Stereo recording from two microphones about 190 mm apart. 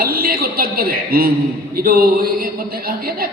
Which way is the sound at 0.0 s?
50° right (ahead or behind).